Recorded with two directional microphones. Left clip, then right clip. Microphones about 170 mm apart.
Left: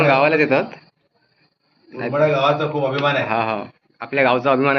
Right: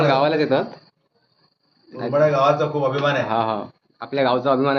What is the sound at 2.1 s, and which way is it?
A man's voice, 20° right (ahead or behind).